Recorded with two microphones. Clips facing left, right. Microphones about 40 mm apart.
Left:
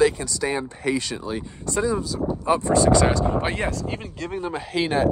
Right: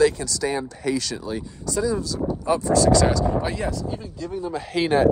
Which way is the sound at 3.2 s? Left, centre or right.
Left.